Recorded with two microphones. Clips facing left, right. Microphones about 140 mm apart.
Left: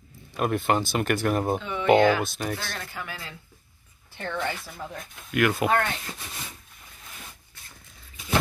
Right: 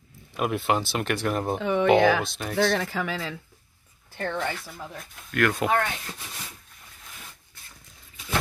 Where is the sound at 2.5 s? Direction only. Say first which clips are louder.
Right 11 dB; 90° right.